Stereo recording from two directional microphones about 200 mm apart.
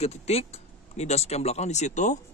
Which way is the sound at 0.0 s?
30° left (ahead or behind).